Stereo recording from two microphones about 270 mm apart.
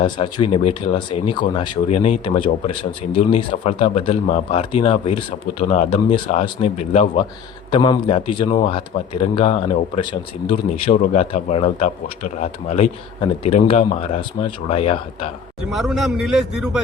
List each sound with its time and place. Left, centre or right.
0.0 s speech: centre
15.7 s a man's voice: centre